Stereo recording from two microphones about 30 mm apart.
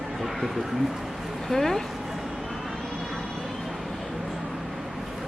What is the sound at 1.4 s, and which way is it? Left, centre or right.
Speech, centre.